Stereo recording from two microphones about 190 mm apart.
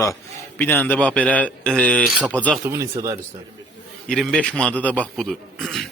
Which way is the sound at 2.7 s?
15° right (ahead or behind).